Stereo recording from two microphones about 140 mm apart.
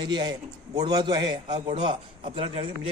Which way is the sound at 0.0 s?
30° right (ahead or behind).